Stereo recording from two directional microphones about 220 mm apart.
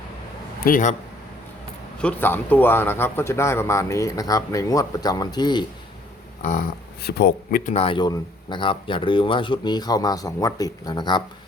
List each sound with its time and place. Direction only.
0.6 s a man's voice: 35° left (ahead or behind)
2.0 s speech: 5° left (ahead or behind)
6.4 s speech: 35° left (ahead or behind); by 11.2 s 20° left (ahead or behind)